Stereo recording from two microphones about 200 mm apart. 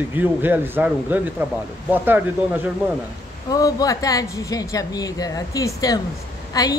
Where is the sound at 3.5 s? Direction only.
20° left (ahead or behind).